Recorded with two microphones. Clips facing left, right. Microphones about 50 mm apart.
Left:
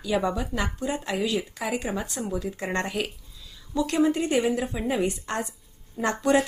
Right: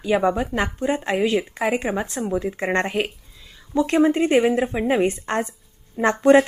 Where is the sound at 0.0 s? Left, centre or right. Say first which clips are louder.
Right 6 dB; right.